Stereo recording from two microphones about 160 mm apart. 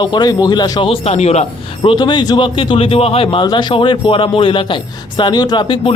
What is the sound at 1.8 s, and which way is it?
A man's voice, 30° left (ahead or behind).